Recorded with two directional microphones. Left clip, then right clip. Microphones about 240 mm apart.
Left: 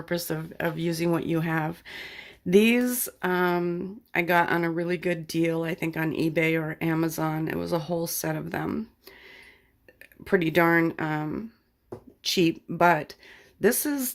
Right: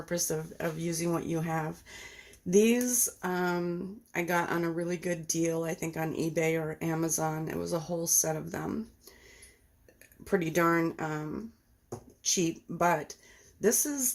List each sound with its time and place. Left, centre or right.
0.0 s speech: left
10.2 s speech: left